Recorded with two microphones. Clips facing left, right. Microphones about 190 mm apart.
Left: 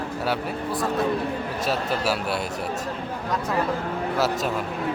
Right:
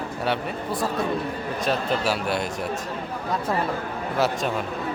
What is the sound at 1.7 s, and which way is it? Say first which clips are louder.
Speech: right 1 dB; 5° left (ahead or behind).